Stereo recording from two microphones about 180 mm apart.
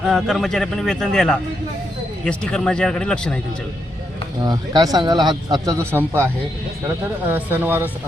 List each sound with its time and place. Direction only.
0.0 s a man's voice: centre (ahead or behind)
4.4 s speech: 20° right (ahead or behind)